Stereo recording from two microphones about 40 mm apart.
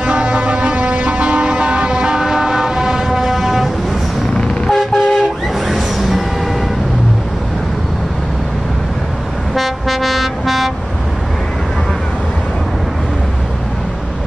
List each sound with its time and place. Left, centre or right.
0.0 s music: right; by 3.7 s centre
4.6 s toot: centre
5.7 s music: centre
9.6 s a sound: centre